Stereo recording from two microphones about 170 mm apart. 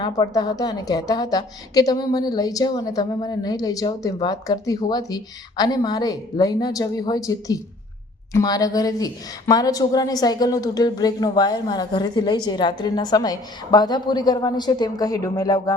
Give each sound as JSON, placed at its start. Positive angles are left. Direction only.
{"t": 0.0, "sound": "a woman's voice", "side_deg": 25}